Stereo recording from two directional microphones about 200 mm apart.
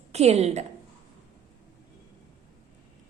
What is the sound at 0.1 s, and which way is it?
Speech, 30° right (ahead or behind).